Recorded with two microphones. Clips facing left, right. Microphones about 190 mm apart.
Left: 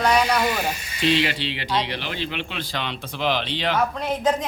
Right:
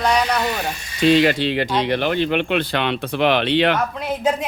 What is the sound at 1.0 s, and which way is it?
Speech, 45° right (ahead or behind).